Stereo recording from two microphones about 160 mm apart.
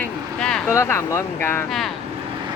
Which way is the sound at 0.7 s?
15° left (ahead or behind).